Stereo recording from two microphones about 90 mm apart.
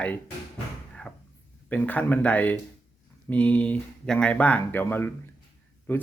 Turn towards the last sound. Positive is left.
turn(degrees=20)  # may be behind; listen again after turning